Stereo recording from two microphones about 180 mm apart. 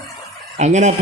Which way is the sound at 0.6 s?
40° right (ahead or behind).